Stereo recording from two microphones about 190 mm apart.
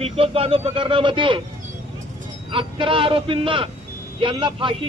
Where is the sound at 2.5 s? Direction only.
25° right (ahead or behind).